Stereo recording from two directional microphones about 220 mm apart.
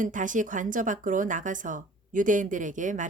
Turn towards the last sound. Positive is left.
turn(degrees=-35)  # may be behind; listen again after turning